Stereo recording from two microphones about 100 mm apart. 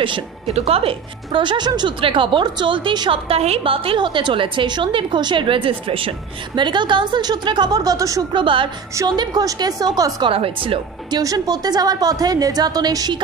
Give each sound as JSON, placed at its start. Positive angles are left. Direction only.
{"t": 0.5, "sound": "a woman's voice", "side_deg": -90}
{"t": 3.3, "sound": "a woman's voice", "side_deg": -85}
{"t": 8.3, "sound": "a woman's voice", "side_deg": -55}
{"t": 8.9, "sound": "a woman's voice", "side_deg": -45}
{"t": 10.2, "sound": "speech", "side_deg": -65}
{"t": 11.1, "sound": "a woman's voice", "side_deg": -40}